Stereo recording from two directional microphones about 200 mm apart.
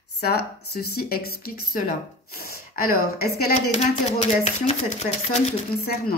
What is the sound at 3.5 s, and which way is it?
Speech, 35° left (ahead or behind).